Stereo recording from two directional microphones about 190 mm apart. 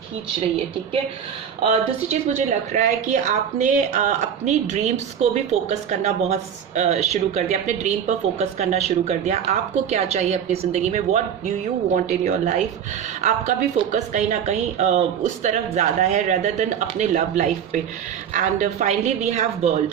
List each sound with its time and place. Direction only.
2.0 s a woman's voice: 40° right (ahead or behind)